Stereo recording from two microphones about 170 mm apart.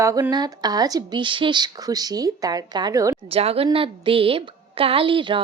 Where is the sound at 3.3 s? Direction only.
35° right (ahead or behind).